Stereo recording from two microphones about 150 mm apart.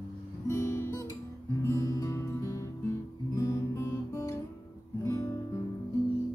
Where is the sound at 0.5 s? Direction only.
20° left (ahead or behind).